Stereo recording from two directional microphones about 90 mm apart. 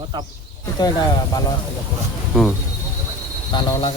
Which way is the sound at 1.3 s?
45° left (ahead or behind).